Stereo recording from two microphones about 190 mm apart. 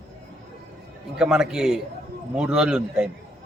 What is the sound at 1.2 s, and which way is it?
A man's voice, 5° right (ahead or behind).